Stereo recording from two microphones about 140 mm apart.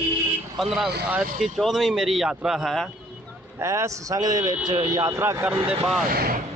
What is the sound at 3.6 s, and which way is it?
A man's voice, 20° right (ahead or behind).